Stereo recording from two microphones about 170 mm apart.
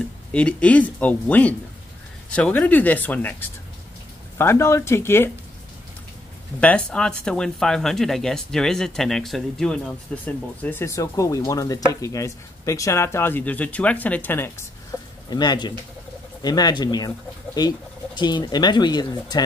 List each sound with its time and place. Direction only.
0.3 s speech: 5° left (ahead or behind)
6.6 s speech: 5° left (ahead or behind)
15.2 s speech: 25° left (ahead or behind)